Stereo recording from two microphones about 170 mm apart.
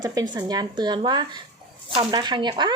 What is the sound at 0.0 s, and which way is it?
Speech, 20° right (ahead or behind).